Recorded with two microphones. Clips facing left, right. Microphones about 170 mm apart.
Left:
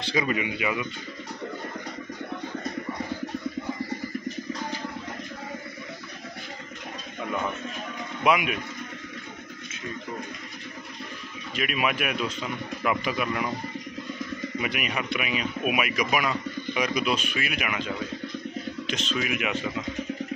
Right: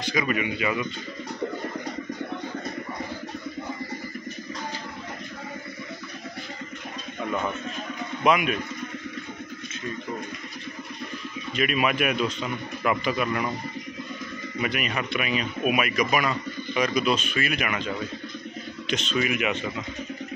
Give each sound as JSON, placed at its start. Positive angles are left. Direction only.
{"t": 0.0, "sound": "speech", "side_deg": 25}
{"t": 8.2, "sound": "speech", "side_deg": 10}
{"t": 11.5, "sound": "speech", "side_deg": 5}
{"t": 14.6, "sound": "speech", "side_deg": 10}
{"t": 18.9, "sound": "speech", "side_deg": 0}